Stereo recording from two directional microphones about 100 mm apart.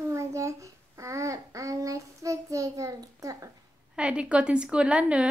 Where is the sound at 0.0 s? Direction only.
30° right (ahead or behind).